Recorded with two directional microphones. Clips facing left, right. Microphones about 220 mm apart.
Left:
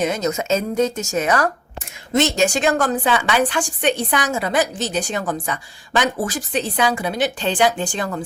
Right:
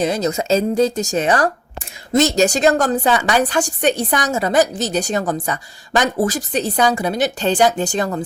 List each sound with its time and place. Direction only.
0.0 s a woman's voice: 35° right (ahead or behind)